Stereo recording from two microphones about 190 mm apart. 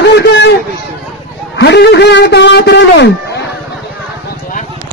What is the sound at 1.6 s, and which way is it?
A man's voice, 65° left (ahead or behind).